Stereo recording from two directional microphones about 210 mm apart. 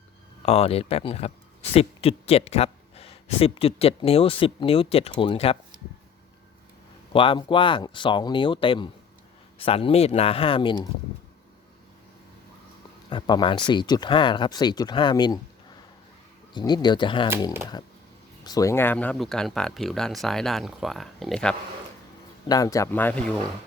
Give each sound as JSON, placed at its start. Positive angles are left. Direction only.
{"t": 0.4, "sound": "speech", "side_deg": 30}
{"t": 7.1, "sound": "speech", "side_deg": 25}
{"t": 13.1, "sound": "speech", "side_deg": 20}
{"t": 16.6, "sound": "speech", "side_deg": 20}
{"t": 18.4, "sound": "speech", "side_deg": 15}
{"t": 22.4, "sound": "speech", "side_deg": 15}